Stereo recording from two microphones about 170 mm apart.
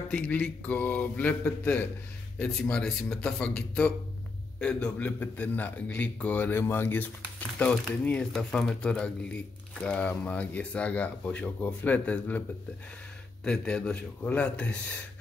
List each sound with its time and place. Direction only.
0.1 s a man's voice: 10° left (ahead or behind)